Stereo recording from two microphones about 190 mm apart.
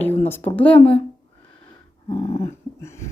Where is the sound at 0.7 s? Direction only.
30° left (ahead or behind).